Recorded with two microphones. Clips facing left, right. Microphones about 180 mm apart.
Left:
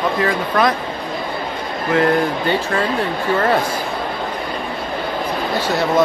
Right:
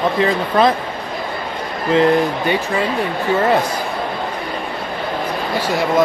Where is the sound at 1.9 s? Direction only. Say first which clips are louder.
Right 2 dB; 25° right (ahead or behind).